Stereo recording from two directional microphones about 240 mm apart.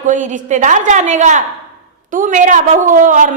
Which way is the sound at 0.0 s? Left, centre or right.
Right.